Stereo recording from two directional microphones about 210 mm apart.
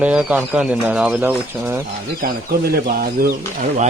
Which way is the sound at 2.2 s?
45° right (ahead or behind).